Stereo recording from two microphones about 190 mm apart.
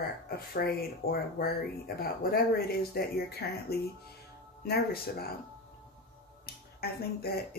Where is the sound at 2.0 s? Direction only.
50° left (ahead or behind).